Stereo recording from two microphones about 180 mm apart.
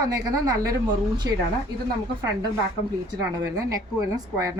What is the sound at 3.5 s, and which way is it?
Speech, 20° right (ahead or behind).